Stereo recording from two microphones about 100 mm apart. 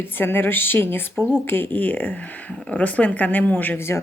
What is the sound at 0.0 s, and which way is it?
Speech, 20° left (ahead or behind).